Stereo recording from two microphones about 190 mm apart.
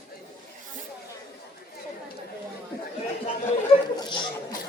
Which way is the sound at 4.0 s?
25° left (ahead or behind).